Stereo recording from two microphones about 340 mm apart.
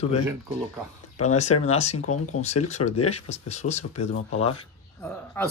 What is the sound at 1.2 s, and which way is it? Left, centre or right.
Speech, centre.